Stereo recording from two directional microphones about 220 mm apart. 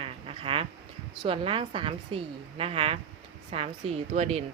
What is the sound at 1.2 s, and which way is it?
A woman's voice, 25° right (ahead or behind).